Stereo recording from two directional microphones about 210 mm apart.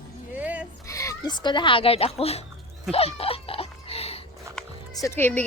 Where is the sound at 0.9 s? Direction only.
15° left (ahead or behind).